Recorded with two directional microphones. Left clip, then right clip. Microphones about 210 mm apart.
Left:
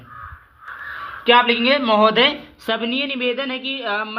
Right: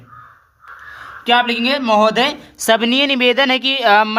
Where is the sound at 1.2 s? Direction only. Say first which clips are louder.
Even; 15° right (ahead or behind).